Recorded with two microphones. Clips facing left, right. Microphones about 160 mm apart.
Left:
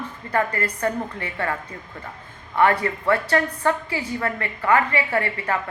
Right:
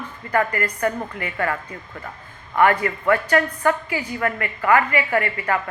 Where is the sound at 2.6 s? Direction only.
30° left (ahead or behind).